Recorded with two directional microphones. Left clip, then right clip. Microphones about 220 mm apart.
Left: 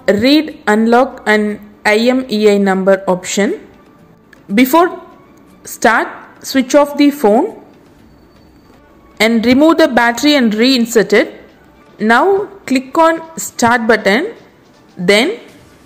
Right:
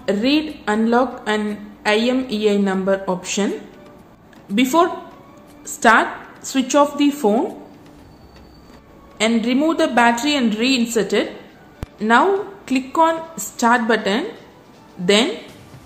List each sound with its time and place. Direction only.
0.0 s a woman's voice: 35° left (ahead or behind)
4.6 s a woman's voice: 35° left (ahead or behind)
9.2 s a woman's voice: 35° left (ahead or behind)